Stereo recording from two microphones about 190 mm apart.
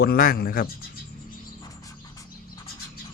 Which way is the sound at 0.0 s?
50° left (ahead or behind).